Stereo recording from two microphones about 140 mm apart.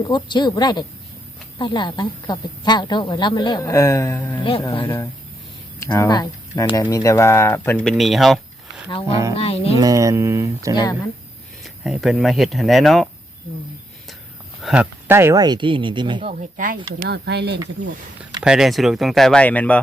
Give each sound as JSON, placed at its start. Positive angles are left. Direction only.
{"t": 0.0, "sound": "speech", "side_deg": 30}
{"t": 4.4, "sound": "speech", "side_deg": 40}
{"t": 5.8, "sound": "speech", "side_deg": 20}
{"t": 7.9, "sound": "speech", "side_deg": 0}
{"t": 8.9, "sound": "speech", "side_deg": 40}
{"t": 9.3, "sound": "music", "side_deg": 45}
{"t": 9.7, "sound": "speech", "side_deg": -25}
{"t": 10.8, "sound": "speech", "side_deg": 25}
{"t": 11.6, "sound": "speech", "side_deg": -5}
{"t": 14.6, "sound": "speech", "side_deg": -5}
{"t": 15.4, "sound": "speech", "side_deg": -30}
{"t": 16.6, "sound": "speech", "side_deg": -80}
{"t": 18.4, "sound": "speech", "side_deg": -5}